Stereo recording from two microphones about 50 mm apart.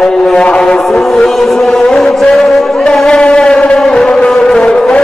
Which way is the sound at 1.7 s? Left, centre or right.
Centre.